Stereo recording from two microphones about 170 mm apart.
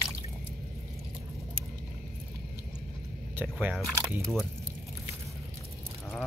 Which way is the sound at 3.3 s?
10° right (ahead or behind).